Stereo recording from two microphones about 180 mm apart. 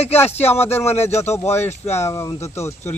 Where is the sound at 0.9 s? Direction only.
35° left (ahead or behind).